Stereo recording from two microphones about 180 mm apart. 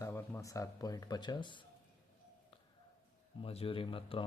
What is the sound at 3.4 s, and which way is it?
Speech, 30° left (ahead or behind).